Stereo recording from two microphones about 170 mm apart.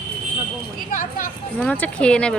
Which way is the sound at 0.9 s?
50° left (ahead or behind).